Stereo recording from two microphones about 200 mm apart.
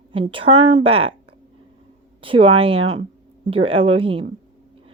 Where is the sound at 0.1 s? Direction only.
25° right (ahead or behind).